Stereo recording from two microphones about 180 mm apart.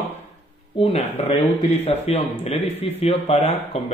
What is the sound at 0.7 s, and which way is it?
Speech, 30° left (ahead or behind).